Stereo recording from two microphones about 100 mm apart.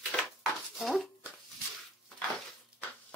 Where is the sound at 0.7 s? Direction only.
Centre (ahead or behind).